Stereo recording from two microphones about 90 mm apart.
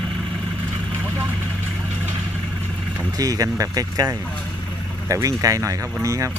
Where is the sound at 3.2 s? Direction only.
40° right (ahead or behind).